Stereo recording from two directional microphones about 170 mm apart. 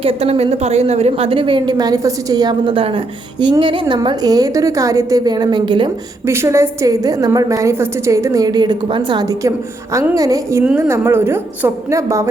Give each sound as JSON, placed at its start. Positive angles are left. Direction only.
{"t": 0.0, "sound": "a woman's voice", "side_deg": -35}
{"t": 6.2, "sound": "a woman's voice", "side_deg": -15}